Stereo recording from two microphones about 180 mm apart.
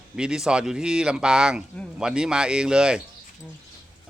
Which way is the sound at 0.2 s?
5° right (ahead or behind).